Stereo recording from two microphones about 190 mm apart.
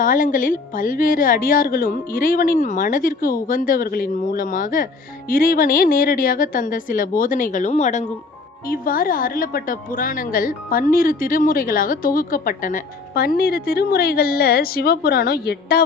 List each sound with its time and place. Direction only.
0.0 s a woman's voice: 45° left (ahead or behind)
8.6 s a woman's voice: 50° left (ahead or behind)